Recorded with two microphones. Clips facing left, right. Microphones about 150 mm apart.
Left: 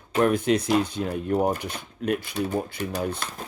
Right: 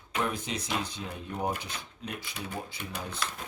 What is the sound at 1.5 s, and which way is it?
Speech, 50° left (ahead or behind).